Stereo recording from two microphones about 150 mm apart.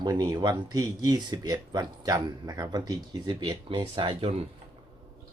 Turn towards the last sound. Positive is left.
turn(degrees=-40)  # may be behind; listen again after turning